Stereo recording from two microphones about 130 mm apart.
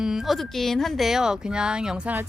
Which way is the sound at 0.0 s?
Centre (ahead or behind).